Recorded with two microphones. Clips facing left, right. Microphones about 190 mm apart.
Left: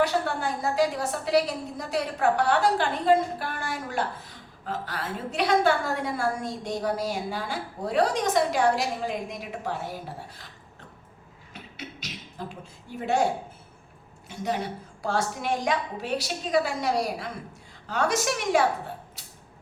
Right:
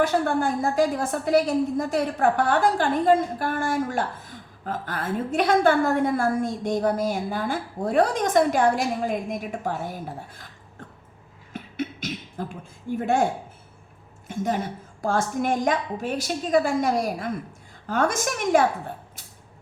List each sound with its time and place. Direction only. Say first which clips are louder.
0.0 s a woman's voice: right 4 dB; 50° right (ahead or behind)
11.5 s beatboxing: right 11 dB; 50° right (ahead or behind)
13.0 s a woman's voice: right 2 dB; 50° right (ahead or behind)
14.3 s a woman's voice: right 3 dB; 50° right (ahead or behind)